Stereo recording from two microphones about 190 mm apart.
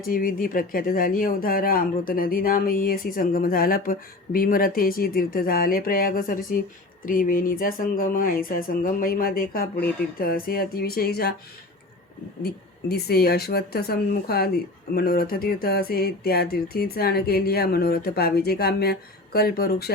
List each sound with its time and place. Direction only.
0.0 s speech: 50° left (ahead or behind)
12.4 s speech: 55° left (ahead or behind)